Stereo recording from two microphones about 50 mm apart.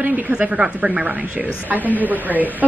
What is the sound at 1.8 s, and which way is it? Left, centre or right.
Speech, left.